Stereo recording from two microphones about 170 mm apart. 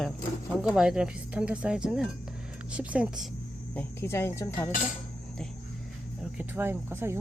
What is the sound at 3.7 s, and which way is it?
Speech, 15° left (ahead or behind).